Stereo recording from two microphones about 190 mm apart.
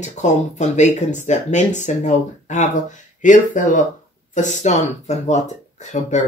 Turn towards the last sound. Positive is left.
turn(degrees=40)  # may be behind; listen again after turning